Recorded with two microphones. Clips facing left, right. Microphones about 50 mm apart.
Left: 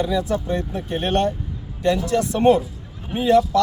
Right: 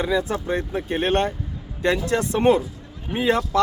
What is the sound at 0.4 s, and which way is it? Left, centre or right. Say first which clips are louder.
Speech: even; right.